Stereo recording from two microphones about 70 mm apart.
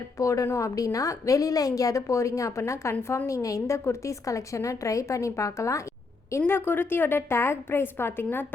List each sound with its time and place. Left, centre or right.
0.2 s a woman's voice: left
6.5 s a woman's voice: left